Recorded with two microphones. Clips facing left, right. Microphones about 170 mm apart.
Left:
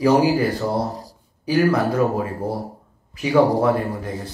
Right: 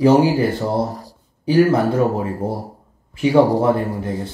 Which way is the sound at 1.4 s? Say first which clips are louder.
Right 4 dB; 25° right (ahead or behind).